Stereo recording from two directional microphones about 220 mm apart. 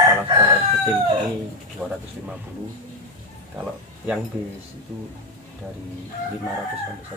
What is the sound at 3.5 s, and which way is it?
Speech, 5° right (ahead or behind).